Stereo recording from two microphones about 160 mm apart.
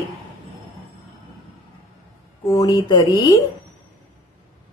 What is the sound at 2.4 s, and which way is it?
Speech, 20° left (ahead or behind).